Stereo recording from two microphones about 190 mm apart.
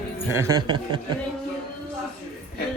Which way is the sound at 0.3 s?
20° right (ahead or behind).